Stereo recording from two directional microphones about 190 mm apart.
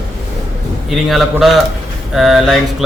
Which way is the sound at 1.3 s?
Centre (ahead or behind).